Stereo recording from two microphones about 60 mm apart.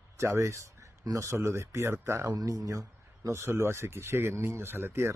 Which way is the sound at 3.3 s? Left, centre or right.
Right.